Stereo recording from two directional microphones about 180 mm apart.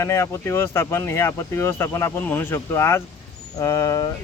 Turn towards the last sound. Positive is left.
turn(degrees=20)  # may be behind; listen again after turning